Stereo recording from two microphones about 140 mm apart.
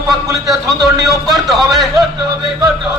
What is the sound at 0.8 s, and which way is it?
Speech, 30° right (ahead or behind).